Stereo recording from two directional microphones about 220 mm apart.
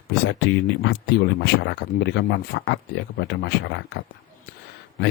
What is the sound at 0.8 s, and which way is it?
Speech, 50° left (ahead or behind).